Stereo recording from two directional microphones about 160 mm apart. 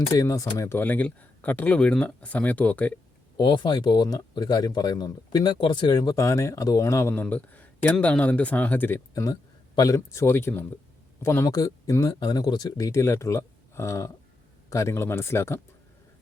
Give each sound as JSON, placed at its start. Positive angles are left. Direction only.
{"t": 0.1, "sound": "speech", "side_deg": 20}
{"t": 3.3, "sound": "speech", "side_deg": 30}